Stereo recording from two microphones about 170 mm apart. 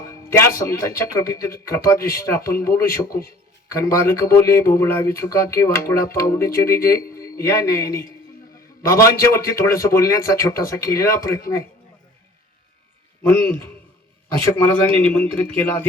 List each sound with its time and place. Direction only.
0.0 s a man's voice: 15° left (ahead or behind)
13.2 s a man's voice: 10° left (ahead or behind)
14.7 s a man's voice: 10° left (ahead or behind)